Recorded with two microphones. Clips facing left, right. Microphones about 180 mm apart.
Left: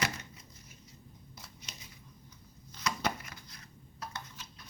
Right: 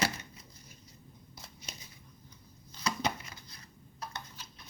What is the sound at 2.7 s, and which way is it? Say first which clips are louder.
Chopping: right 1 dB; 25° right (ahead or behind).